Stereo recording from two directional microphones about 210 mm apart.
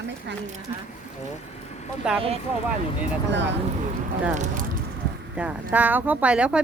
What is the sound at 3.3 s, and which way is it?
Speech, 55° right (ahead or behind).